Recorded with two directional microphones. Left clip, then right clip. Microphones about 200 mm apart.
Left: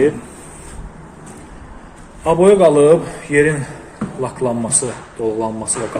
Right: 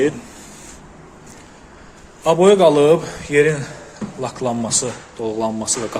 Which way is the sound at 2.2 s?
25° right (ahead or behind).